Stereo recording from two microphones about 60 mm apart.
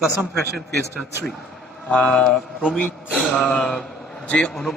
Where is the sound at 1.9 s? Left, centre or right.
Centre.